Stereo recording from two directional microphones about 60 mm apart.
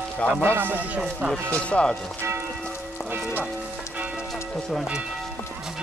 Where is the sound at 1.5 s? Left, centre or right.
Centre.